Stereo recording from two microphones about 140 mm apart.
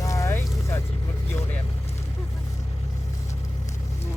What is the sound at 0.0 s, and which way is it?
Vehicle, 20° left (ahead or behind).